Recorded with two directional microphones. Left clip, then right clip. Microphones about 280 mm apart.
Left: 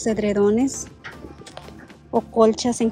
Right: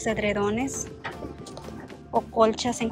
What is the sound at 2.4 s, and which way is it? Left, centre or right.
Speech, centre.